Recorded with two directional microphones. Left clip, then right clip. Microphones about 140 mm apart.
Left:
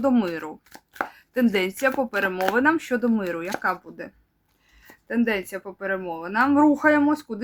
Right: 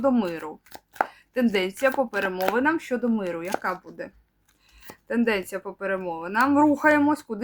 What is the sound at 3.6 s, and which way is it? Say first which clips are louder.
Speech: left 3 dB; 15° left (ahead or behind).